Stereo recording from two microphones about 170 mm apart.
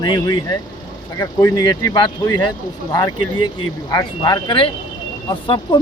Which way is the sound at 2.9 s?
25° left (ahead or behind).